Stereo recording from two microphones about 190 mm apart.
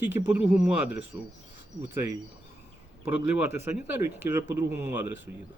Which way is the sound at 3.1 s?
10° right (ahead or behind).